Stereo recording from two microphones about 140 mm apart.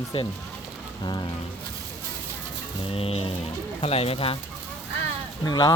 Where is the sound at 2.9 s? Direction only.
40° left (ahead or behind).